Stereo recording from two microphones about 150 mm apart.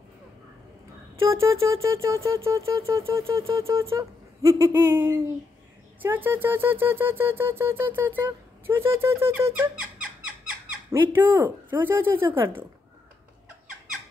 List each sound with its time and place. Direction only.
1.2 s a sound: 20° right (ahead or behind)
3.9 s speech: 20° right (ahead or behind)
10.9 s speech: 15° right (ahead or behind)